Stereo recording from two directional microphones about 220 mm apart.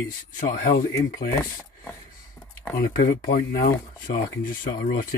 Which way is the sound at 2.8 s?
40° left (ahead or behind).